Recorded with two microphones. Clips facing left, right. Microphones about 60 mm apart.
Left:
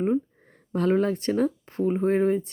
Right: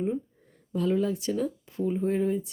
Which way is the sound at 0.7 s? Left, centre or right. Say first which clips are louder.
Left 4 dB; left.